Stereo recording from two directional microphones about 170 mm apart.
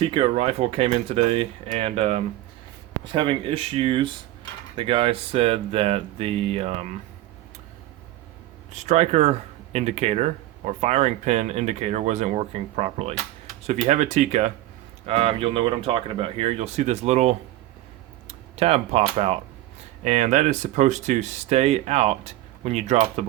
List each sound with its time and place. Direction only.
0.0 s speech: 30° right (ahead or behind)
8.7 s speech: 40° right (ahead or behind)